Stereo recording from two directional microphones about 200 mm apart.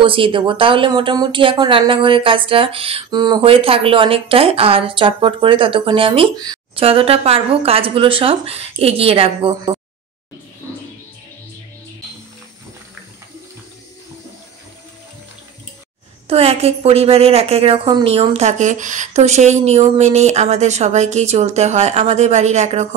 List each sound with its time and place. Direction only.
0.0 s speech: 25° right (ahead or behind)
16.3 s a woman's voice: 30° right (ahead or behind)